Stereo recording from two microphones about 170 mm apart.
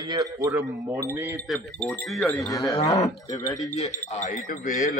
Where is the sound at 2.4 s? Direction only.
20° left (ahead or behind).